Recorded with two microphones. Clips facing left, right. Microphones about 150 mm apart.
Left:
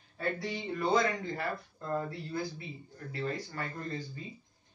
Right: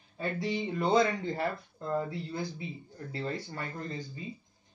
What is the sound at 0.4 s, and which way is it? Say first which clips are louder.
Speech: right 3 dB; 20° right (ahead or behind).